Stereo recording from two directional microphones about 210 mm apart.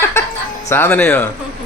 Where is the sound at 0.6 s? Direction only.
10° left (ahead or behind).